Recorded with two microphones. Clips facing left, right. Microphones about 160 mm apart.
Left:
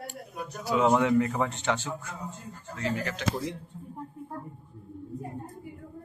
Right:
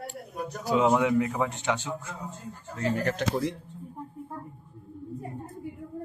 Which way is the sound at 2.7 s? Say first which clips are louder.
Right 4 dB; 45° right (ahead or behind).